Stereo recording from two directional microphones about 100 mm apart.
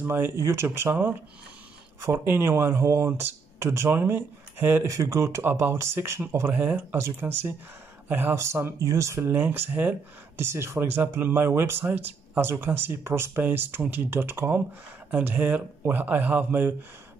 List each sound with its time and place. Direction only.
0.0 s speech: 20° right (ahead or behind)
4.8 s speech: 30° right (ahead or behind)